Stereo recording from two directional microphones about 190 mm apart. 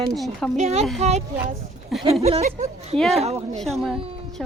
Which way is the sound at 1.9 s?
Centre (ahead or behind).